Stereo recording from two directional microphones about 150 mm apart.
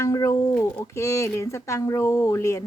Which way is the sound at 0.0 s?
20° left (ahead or behind).